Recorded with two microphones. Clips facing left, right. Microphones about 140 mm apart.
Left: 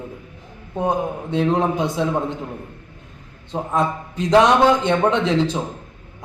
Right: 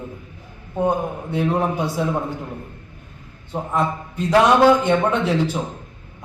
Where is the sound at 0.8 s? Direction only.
20° left (ahead or behind).